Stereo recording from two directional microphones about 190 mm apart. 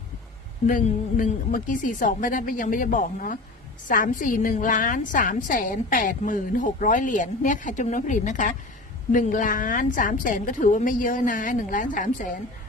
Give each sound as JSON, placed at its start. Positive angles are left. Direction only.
{"t": 0.7, "sound": "a woman's voice", "side_deg": 45}